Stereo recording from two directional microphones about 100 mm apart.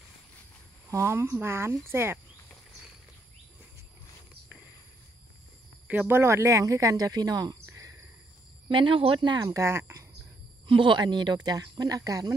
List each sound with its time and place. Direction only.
0.8 s speech: 30° right (ahead or behind)
5.9 s speech: 20° right (ahead or behind); by 7.5 s 40° right (ahead or behind)
7.6 s a sound: 35° right (ahead or behind)
8.6 s speech: 55° right (ahead or behind)
9.5 s speech: 30° right (ahead or behind)
10.7 s speech: 55° right (ahead or behind); by 12.4 s 35° right (ahead or behind)